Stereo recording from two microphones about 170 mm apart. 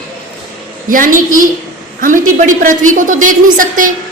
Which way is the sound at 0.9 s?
55° right (ahead or behind).